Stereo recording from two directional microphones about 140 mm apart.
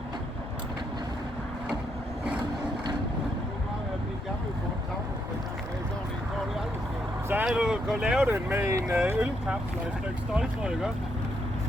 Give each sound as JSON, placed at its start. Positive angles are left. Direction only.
{"t": 7.4, "sound": "speech", "side_deg": -5}
{"t": 8.2, "sound": "speech", "side_deg": -15}